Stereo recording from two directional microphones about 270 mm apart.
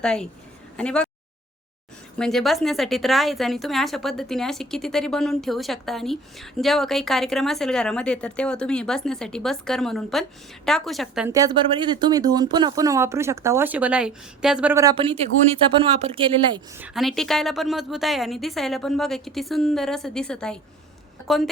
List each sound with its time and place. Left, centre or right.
0.0 s a woman's voice: centre
2.1 s a woman's voice: centre
16.7 s a woman's voice: centre